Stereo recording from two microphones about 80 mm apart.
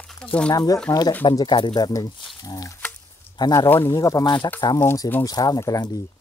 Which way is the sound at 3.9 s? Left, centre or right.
Left.